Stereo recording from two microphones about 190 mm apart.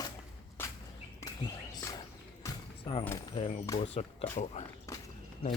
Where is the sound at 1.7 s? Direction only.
20° left (ahead or behind).